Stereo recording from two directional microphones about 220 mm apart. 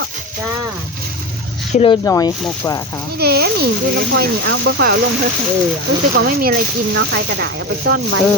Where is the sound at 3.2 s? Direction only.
45° right (ahead or behind).